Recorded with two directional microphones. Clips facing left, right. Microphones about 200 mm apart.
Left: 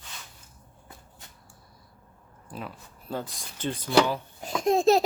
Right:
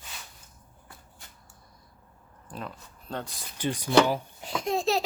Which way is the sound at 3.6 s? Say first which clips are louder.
Right 1 dB; 15° right (ahead or behind).